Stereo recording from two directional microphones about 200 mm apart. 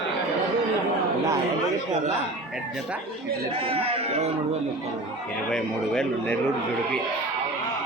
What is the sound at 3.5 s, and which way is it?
Speech, 30° right (ahead or behind).